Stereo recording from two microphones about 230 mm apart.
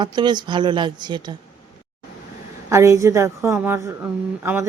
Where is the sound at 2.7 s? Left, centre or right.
Centre.